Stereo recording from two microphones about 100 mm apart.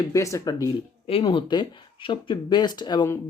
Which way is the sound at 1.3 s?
50° left (ahead or behind).